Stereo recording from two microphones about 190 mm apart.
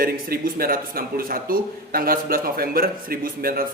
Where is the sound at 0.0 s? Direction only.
50° right (ahead or behind).